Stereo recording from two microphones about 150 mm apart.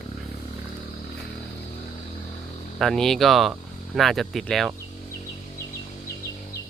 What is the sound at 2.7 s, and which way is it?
Speech, centre (ahead or behind).